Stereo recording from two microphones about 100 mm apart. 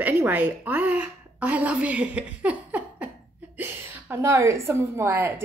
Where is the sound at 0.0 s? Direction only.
20° right (ahead or behind).